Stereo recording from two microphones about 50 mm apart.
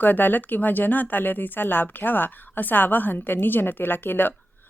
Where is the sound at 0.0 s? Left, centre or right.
Left.